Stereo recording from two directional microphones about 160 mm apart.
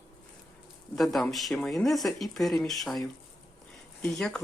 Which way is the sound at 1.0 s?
Centre (ahead or behind).